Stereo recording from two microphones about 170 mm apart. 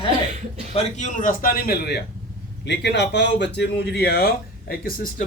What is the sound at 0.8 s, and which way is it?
Speech, 45° left (ahead or behind).